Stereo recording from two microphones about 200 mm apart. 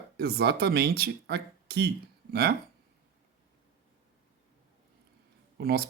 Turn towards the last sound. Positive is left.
turn(degrees=-50)  # may be behind; listen again after turning